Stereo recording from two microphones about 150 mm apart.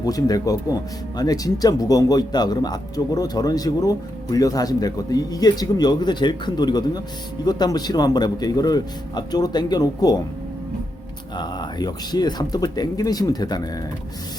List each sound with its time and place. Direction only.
0.0 s speech: 25° left (ahead or behind)
11.3 s speech: 30° left (ahead or behind)